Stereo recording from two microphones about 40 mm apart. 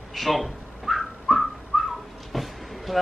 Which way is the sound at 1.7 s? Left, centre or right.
Centre.